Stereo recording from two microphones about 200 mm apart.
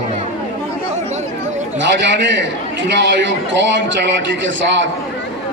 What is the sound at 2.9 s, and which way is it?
Speech, 65° right (ahead or behind).